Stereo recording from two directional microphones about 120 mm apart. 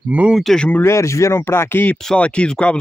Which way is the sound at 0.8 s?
25° left (ahead or behind).